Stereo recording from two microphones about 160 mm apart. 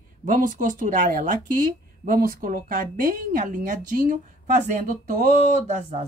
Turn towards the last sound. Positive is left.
turn(degrees=-50)  # may be behind; listen again after turning